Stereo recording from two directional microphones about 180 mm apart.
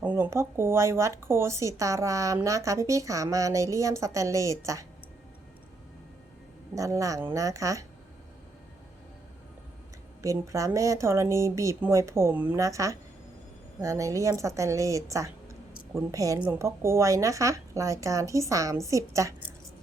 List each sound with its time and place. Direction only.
0.0 s speech: 10° right (ahead or behind)
6.7 s speech: 20° right (ahead or behind)
10.2 s speech: 15° right (ahead or behind)